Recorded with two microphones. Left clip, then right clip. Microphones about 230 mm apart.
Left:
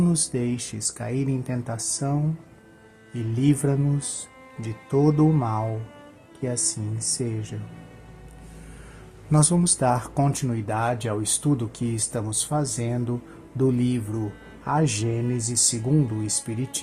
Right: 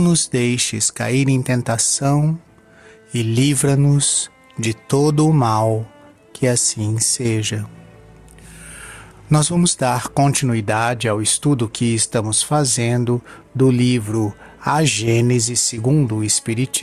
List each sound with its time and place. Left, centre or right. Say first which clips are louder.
0.0 s speech: right 8 dB; right
9.3 s speech: right 5 dB; right